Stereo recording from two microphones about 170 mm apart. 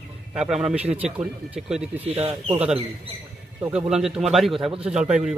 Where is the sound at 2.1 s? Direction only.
35° right (ahead or behind).